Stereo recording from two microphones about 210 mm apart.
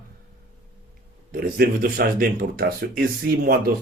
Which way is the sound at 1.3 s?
45° right (ahead or behind).